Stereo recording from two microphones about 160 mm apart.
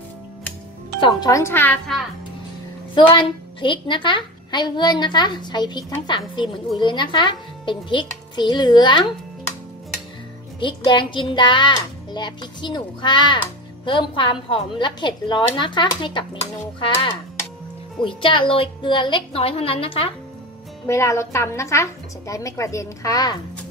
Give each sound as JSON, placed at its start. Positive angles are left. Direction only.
{"t": 1.0, "sound": "speech", "side_deg": 20}
{"t": 2.9, "sound": "a child's voice", "side_deg": 30}
{"t": 10.6, "sound": "a child's voice", "side_deg": 30}
{"t": 18.0, "sound": "a woman's voice", "side_deg": 30}
{"t": 20.8, "sound": "a child's voice", "side_deg": 20}